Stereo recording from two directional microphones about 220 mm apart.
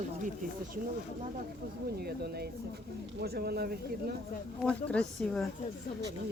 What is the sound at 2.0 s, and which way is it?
Speech, 45° right (ahead or behind).